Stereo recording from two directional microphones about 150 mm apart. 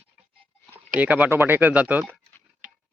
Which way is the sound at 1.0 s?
10° right (ahead or behind).